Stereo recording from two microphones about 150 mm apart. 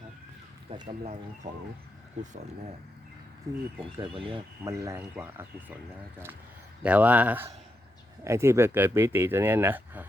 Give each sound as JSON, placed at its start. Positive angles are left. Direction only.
{"t": 0.7, "sound": "speech", "side_deg": -40}
{"t": 1.4, "sound": "speech", "side_deg": -90}
{"t": 3.5, "sound": "speech", "side_deg": -20}
{"t": 3.9, "sound": "speech", "side_deg": -35}
{"t": 4.6, "sound": "speech", "side_deg": -20}
{"t": 6.8, "sound": "speech", "side_deg": -10}